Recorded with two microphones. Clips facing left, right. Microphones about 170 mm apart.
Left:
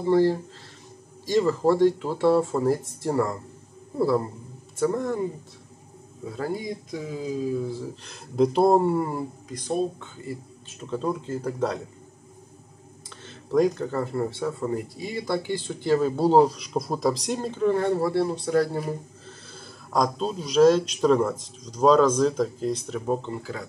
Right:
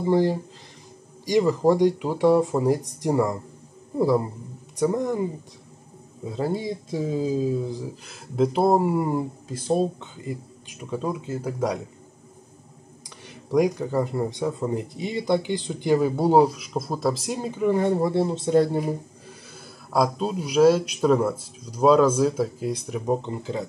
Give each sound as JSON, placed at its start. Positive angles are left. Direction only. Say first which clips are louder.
{"t": 0.0, "sound": "speech", "louder": "left 1 dB", "side_deg": -15}
{"t": 9.7, "sound": "speech", "louder": "right 3 dB", "side_deg": -25}
{"t": 13.3, "sound": "speech", "louder": "even", "side_deg": -15}